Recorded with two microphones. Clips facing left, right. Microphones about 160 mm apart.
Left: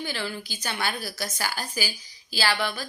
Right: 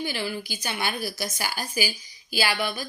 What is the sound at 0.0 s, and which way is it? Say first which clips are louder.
A woman's voice: right 2 dB; 15° right (ahead or behind).